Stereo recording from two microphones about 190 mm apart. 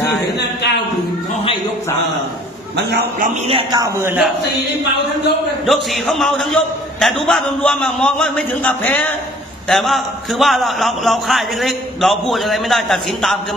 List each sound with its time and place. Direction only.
0.4 s a sound: 65° left (ahead or behind)
2.9 s a man's voice: 55° right (ahead or behind)
3.4 s a man's voice: 30° right (ahead or behind)
3.8 s a man's voice: 15° right (ahead or behind)
5.7 s a man's voice: centre (ahead or behind)